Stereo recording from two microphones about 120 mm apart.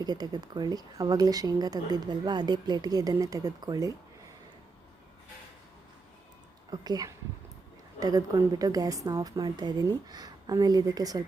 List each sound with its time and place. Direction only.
0.0 s speech: 35° right (ahead or behind)
6.7 s speech: 35° right (ahead or behind)